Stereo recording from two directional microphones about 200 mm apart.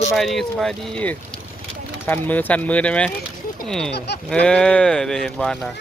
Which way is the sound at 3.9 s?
55° left (ahead or behind).